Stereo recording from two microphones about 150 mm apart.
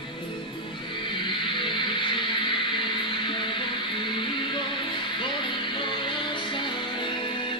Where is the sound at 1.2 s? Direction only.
30° left (ahead or behind).